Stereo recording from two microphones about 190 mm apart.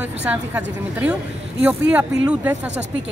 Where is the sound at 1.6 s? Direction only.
5° right (ahead or behind).